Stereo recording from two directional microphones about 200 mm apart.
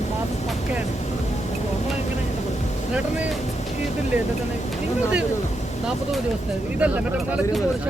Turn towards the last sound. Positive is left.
turn(degrees=-5)  # may be behind; listen again after turning